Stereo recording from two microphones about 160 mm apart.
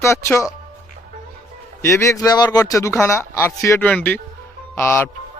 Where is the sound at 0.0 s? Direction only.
15° left (ahead or behind).